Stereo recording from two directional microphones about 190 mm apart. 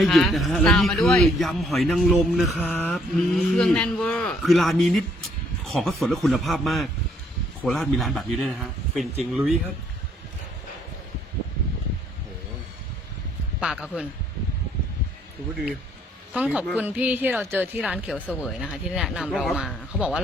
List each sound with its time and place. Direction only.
0.0 s a man's voice: centre (ahead or behind)
13.6 s a man's voice: 5° right (ahead or behind)
16.3 s a man's voice: 5° right (ahead or behind)